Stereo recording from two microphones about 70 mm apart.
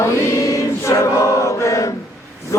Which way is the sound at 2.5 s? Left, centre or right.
Left.